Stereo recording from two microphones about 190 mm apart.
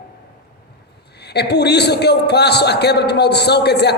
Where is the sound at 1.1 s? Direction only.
60° left (ahead or behind).